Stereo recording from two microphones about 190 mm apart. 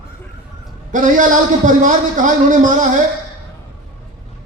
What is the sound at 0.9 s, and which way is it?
A man's voice, 45° right (ahead or behind).